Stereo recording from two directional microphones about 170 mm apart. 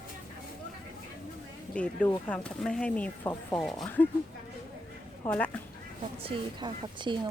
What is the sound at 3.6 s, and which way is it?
Speech, 5° left (ahead or behind).